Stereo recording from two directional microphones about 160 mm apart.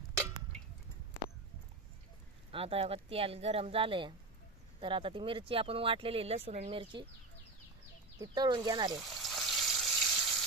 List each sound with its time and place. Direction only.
2.5 s speech: 35° right (ahead or behind)
8.2 s speech: 25° right (ahead or behind)
8.9 s water: centre (ahead or behind)